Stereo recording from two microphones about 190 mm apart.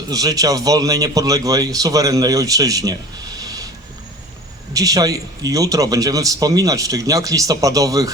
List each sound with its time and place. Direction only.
0.1 s speech: 20° right (ahead or behind)
3.3 s a sound: 20° right (ahead or behind)
4.7 s speech: 20° right (ahead or behind)